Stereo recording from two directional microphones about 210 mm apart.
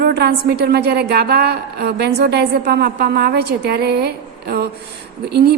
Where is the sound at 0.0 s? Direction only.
50° right (ahead or behind).